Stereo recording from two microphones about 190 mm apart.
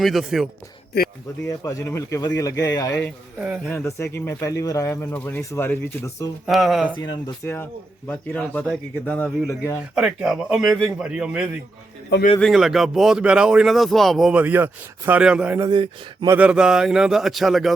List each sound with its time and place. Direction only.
0.0 s speech: centre (ahead or behind)
1.5 s speech: 15° left (ahead or behind)
3.3 s speech: 5° right (ahead or behind)
3.8 s speech: 15° left (ahead or behind)
6.4 s speech: centre (ahead or behind)
6.9 s speech: 20° left (ahead or behind)
9.9 s speech: 5° right (ahead or behind); by 16.4 s 20° right (ahead or behind)
16.4 s speech: 5° right (ahead or behind)